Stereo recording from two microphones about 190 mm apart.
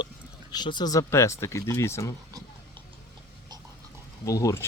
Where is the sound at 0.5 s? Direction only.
20° left (ahead or behind).